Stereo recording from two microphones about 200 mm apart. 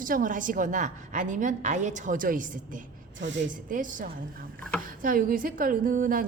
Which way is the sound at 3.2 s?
65° right (ahead or behind).